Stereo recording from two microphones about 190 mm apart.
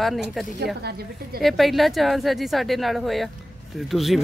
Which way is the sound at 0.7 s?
55° right (ahead or behind).